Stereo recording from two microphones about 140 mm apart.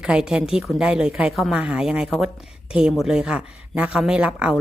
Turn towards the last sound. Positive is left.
turn(degrees=-10)  # may be behind; listen again after turning